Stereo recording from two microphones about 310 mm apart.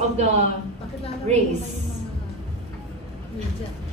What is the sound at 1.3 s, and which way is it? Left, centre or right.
Speech, right.